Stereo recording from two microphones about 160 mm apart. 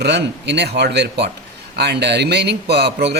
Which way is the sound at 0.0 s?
90° right.